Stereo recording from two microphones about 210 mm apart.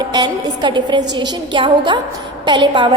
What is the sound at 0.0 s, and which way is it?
A woman's voice, 20° right (ahead or behind).